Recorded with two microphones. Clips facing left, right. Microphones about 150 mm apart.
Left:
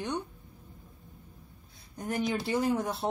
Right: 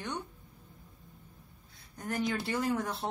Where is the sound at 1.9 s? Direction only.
15° left (ahead or behind).